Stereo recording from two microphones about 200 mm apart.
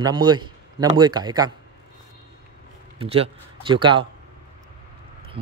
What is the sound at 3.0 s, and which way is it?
Speech, 30° right (ahead or behind).